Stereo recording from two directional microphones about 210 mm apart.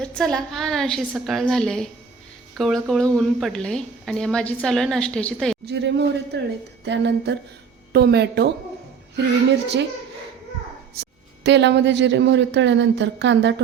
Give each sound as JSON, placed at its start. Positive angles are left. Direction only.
{"t": 0.0, "sound": "a woman's voice", "side_deg": 5}
{"t": 5.6, "sound": "speech", "side_deg": -55}
{"t": 11.0, "sound": "speech", "side_deg": -55}